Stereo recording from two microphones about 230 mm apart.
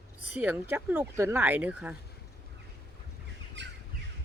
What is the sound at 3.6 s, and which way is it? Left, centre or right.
Bird, right.